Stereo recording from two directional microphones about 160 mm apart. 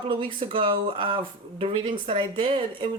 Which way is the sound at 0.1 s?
30° right (ahead or behind).